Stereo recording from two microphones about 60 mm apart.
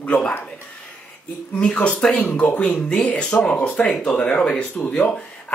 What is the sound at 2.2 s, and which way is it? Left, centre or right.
Speech, left.